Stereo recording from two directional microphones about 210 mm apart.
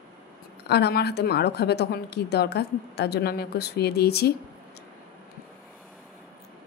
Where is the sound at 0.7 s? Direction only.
50° left (ahead or behind).